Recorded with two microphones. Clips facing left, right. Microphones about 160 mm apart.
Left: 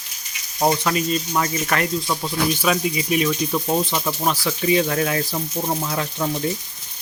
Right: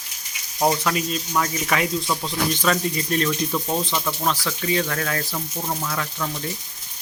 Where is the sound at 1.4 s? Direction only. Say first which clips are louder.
Right 2 dB; centre (ahead or behind); by 6.4 s 25° left (ahead or behind).